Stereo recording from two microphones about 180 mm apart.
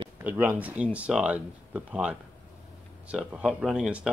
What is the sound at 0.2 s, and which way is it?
Speech, 10° right (ahead or behind).